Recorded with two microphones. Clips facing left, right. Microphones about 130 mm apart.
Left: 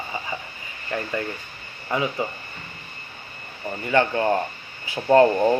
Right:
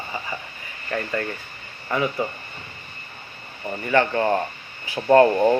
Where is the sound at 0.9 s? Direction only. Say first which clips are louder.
Right 1 dB; 15° left (ahead or behind).